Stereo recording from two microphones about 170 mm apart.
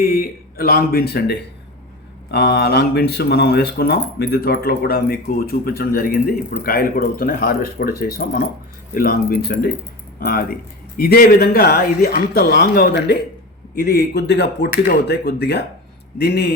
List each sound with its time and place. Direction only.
0.0 s speech: 60° left (ahead or behind)